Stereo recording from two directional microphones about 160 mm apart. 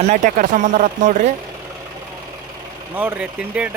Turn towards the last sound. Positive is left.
turn(degrees=-10)  # may be behind; listen again after turning